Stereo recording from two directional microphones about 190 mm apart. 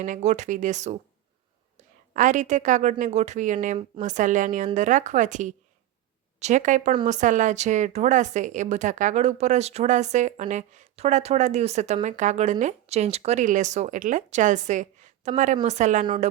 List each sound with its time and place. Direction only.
0.0 s speech: 40° right (ahead or behind)
2.1 s speech: 40° right (ahead or behind)